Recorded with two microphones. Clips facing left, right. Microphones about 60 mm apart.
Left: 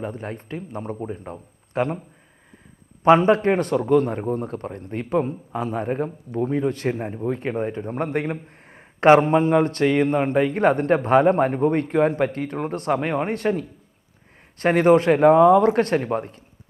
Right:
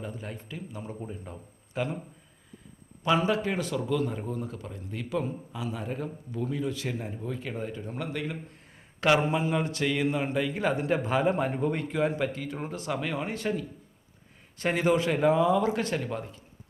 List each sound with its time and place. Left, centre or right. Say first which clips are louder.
0.0 s speech: left 8 dB; left
0.9 s speech: left 8 dB; left
3.0 s speech: left 10 dB; left
4.2 s speech: left 9 dB; left
4.7 s speech: left 9 dB; left
7.3 s speech: left 9 dB; left
16.0 s speech: left 9 dB; left